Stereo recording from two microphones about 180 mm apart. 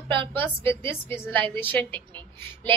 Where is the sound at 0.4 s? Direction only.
10° left (ahead or behind).